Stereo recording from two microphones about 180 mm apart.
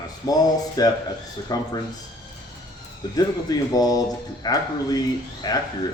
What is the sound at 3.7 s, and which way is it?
Speech, 20° left (ahead or behind).